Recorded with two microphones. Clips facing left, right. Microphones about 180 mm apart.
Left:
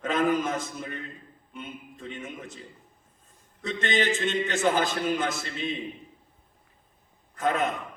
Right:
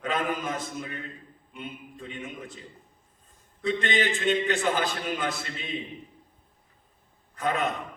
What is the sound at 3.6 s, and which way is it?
Mantra, 45° left (ahead or behind).